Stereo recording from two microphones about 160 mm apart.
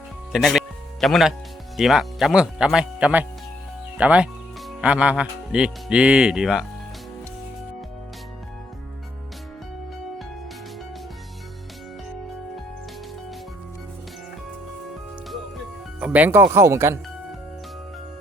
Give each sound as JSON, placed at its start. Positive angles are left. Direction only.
{"t": 0.3, "sound": "speech", "side_deg": 0}
{"t": 16.0, "sound": "speech", "side_deg": -10}